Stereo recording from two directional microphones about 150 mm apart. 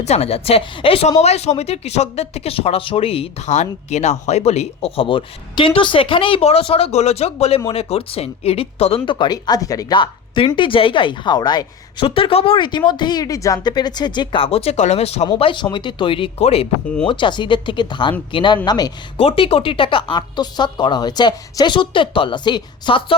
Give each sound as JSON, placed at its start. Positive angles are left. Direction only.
{"t": 0.0, "sound": "speech", "side_deg": 45}
{"t": 9.0, "sound": "speech", "side_deg": 30}
{"t": 19.2, "sound": "speech", "side_deg": 40}